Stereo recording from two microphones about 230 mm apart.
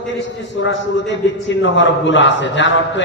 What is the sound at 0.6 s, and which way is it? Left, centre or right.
A man's voice, left.